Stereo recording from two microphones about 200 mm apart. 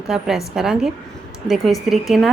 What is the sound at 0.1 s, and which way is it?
A woman's voice, centre (ahead or behind).